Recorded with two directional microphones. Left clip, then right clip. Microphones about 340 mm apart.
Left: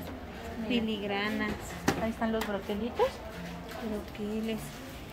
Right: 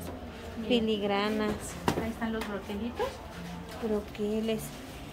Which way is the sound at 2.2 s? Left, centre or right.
Left.